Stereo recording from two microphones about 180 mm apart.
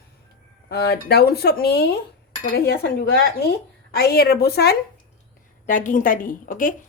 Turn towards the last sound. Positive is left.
turn(degrees=50)  # may be behind; listen again after turning